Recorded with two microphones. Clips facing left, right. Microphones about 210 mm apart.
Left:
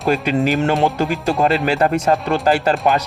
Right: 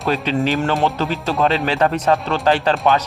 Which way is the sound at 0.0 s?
10° left (ahead or behind).